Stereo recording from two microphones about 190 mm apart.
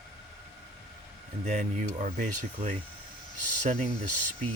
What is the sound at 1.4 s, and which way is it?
Speech, 40° right (ahead or behind).